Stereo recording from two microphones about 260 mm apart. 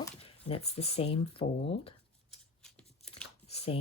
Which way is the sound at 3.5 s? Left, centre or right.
Left.